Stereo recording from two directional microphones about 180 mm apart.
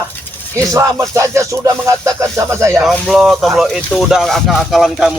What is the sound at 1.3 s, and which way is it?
Speech, 15° right (ahead or behind).